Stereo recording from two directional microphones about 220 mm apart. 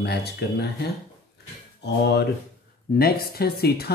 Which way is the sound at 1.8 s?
50° left (ahead or behind).